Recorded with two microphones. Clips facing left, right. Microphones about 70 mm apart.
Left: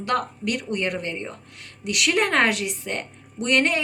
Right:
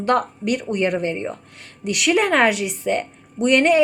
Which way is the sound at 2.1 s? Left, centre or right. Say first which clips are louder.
Right 4 dB; centre.